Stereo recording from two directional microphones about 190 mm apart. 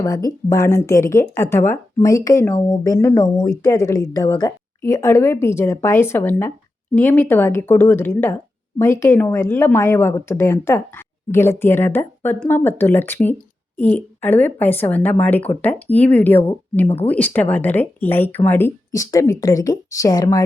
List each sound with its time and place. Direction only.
0.0 s speech: 15° left (ahead or behind)